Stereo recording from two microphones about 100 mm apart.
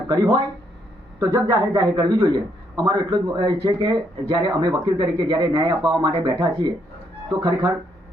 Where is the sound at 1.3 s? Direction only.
45° right (ahead or behind).